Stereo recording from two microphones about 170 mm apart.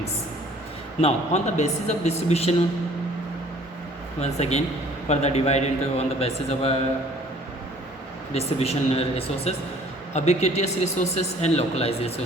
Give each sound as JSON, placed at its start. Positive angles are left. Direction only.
{"t": 1.0, "sound": "speech", "side_deg": 40}
{"t": 4.2, "sound": "speech", "side_deg": 40}
{"t": 8.3, "sound": "speech", "side_deg": 35}